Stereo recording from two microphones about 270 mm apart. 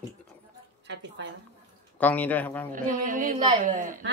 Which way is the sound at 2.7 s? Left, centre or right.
Right.